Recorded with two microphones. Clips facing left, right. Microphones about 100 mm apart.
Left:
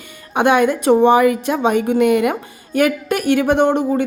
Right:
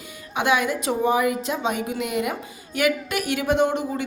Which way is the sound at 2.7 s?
50° left (ahead or behind).